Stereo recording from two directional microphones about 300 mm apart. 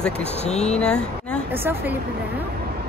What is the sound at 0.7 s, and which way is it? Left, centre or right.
Speech, centre.